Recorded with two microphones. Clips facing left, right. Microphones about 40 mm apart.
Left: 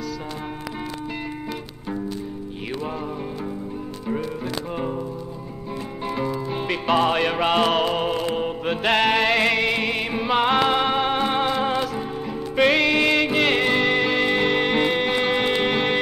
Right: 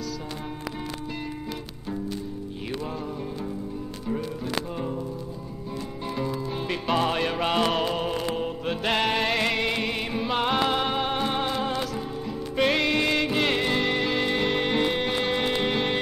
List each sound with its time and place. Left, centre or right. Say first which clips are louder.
6.0 s music: left 4 dB; left
8.8 s music: left 5 dB; centre
13.5 s music: left 5 dB; left